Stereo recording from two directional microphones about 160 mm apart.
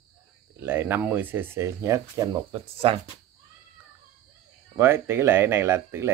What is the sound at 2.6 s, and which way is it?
Speech, 35° right (ahead or behind).